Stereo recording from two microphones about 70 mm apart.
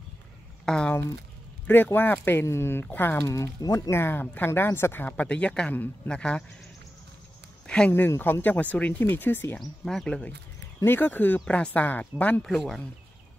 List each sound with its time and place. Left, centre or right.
0.7 s speech: centre
1.7 s speech: left
2.4 s speech: left
2.8 s speech: left
3.6 s speech: left
3.9 s speech: left
5.0 s speech: left
7.6 s a sound: centre
8.2 s speech: left
9.6 s speech: centre
10.0 s speech: centre
10.9 s speech: left
11.4 s speech: centre
12.4 s speech: centre